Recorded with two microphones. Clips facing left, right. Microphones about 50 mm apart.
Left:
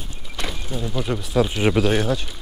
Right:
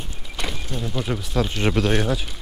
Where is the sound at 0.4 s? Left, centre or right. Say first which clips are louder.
Left 1 dB; centre.